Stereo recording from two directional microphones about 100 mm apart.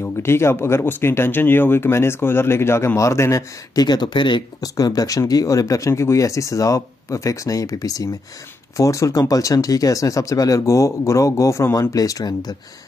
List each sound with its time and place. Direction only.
0.0 s speech: 25° left (ahead or behind); by 4.6 s 50° left (ahead or behind)
4.7 s speech: 40° left (ahead or behind)